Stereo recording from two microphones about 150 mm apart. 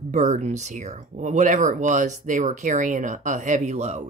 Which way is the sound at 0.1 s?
50° right (ahead or behind).